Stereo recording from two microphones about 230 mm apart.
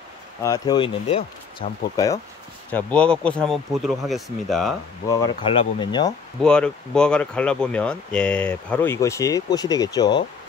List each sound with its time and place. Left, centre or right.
0.4 s speech: centre
2.7 s speech: centre
5.0 s speech: centre
6.4 s speech: centre